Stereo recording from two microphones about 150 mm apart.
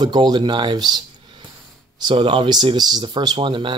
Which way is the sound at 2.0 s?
30° right (ahead or behind).